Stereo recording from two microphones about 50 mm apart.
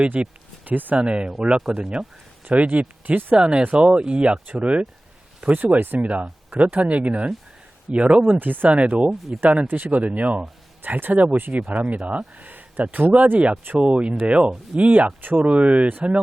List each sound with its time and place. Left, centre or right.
0.1 s speech: right
0.6 s speech: right
0.9 s speech: right
2.5 s speech: right
3.3 s speech: centre
8.4 s speech: right
8.7 s speech: right
9.6 s speech: right
10.1 s speech: right
12.4 s a sound: right
12.9 s speech: right